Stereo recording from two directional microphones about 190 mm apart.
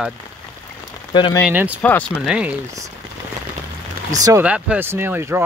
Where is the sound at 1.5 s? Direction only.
10° right (ahead or behind).